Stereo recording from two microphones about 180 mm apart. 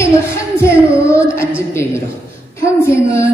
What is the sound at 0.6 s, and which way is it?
Child singing, 15° left (ahead or behind).